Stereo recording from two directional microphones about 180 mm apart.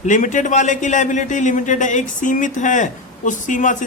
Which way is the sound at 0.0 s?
45° left (ahead or behind).